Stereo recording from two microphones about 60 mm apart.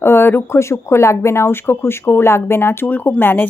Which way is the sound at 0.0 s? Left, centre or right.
Left.